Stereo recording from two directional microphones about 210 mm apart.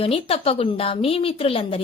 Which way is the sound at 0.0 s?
25° left (ahead or behind).